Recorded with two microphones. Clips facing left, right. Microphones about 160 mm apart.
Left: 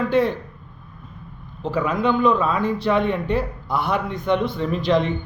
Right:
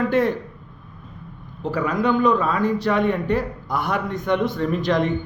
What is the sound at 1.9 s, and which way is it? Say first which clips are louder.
Speech: even; 25° left (ahead or behind).